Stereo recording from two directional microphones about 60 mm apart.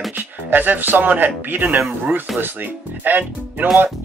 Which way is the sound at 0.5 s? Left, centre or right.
Right.